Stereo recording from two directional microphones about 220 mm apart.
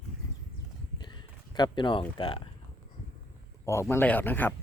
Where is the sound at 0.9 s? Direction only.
20° left (ahead or behind).